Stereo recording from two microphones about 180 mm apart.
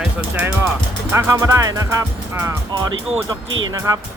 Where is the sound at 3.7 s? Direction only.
20° right (ahead or behind).